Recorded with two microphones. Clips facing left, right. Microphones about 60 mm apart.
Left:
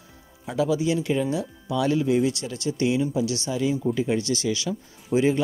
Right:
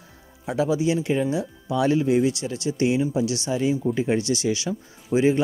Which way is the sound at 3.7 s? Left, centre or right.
Centre.